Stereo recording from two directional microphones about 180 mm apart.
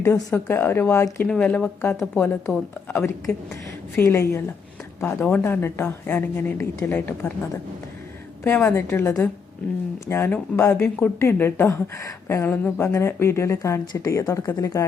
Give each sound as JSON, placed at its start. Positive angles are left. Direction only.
{"t": 0.0, "sound": "speech", "side_deg": 15}
{"t": 8.4, "sound": "speech", "side_deg": 10}